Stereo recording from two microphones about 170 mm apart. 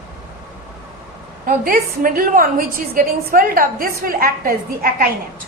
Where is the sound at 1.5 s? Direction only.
55° right (ahead or behind).